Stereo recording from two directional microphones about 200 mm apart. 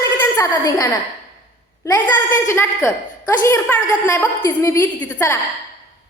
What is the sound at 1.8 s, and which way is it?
A woman's voice, 15° left (ahead or behind).